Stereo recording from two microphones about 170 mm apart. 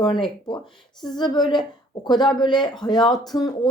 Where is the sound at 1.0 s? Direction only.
25° left (ahead or behind).